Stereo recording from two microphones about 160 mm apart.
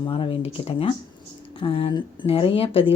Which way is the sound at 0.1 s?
35° left (ahead or behind).